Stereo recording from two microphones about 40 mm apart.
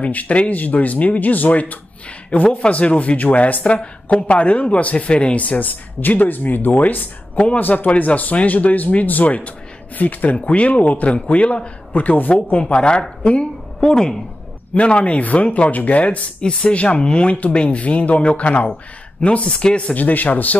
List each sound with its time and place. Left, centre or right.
0.0 s speech: left
3.6 s speech: left
10.4 s speech: left
11.9 s speech: left
13.2 s a sound: left
13.8 s speech: centre
14.8 s speech: left
17.0 s speech: left
19.9 s speech: left